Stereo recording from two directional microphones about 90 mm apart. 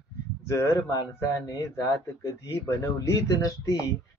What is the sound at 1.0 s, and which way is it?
Speech, 45° left (ahead or behind).